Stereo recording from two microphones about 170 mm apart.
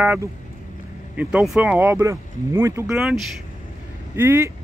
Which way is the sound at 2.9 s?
5° right (ahead or behind).